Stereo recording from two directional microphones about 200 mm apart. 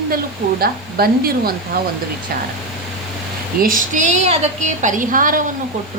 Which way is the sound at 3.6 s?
45° right (ahead or behind).